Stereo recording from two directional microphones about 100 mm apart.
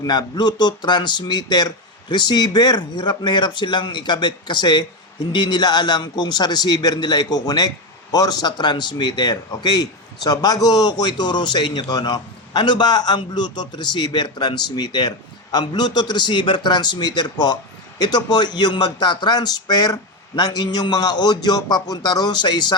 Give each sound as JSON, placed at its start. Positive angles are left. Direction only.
{"t": 0.0, "sound": "a man's voice", "side_deg": 45}